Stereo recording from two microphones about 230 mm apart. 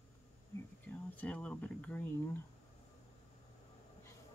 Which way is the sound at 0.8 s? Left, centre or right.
Centre.